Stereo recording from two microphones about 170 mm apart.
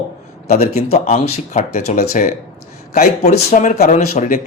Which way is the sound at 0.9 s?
40° left (ahead or behind).